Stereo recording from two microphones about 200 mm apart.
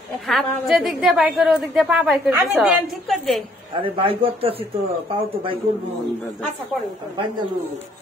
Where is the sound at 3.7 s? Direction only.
25° right (ahead or behind).